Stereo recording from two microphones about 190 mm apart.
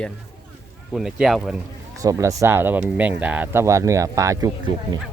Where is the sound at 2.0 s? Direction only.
15° right (ahead or behind).